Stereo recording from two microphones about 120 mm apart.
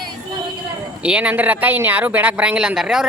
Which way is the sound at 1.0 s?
10° right (ahead or behind).